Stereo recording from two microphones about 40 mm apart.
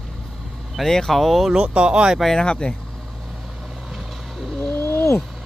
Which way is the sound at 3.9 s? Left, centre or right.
Centre.